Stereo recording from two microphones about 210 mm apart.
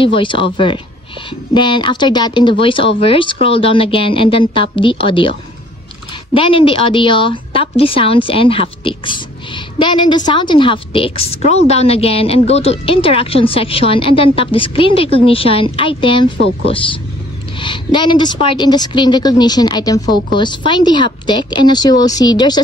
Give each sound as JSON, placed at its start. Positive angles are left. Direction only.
{"t": 0.0, "sound": "a woman's voice", "side_deg": 25}
{"t": 6.3, "sound": "a woman's voice", "side_deg": 25}